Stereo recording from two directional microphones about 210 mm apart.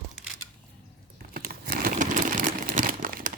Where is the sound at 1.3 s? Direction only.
45° right (ahead or behind).